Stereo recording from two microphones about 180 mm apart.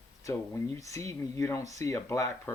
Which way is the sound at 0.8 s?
15° left (ahead or behind).